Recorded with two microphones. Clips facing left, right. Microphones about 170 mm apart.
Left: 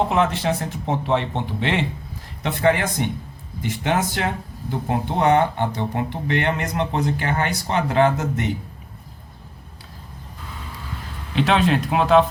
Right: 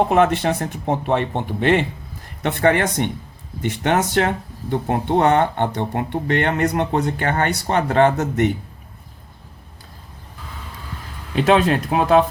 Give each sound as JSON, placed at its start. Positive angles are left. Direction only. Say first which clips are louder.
{"t": 0.1, "sound": "speech", "louder": "right 4 dB", "side_deg": -60}
{"t": 11.3, "sound": "speech", "louder": "right 3 dB", "side_deg": -45}